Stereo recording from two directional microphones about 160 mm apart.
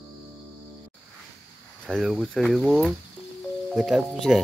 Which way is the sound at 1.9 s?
Centre (ahead or behind).